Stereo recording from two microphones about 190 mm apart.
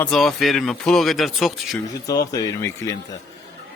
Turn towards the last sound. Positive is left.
turn(degrees=15)  # may be behind; listen again after turning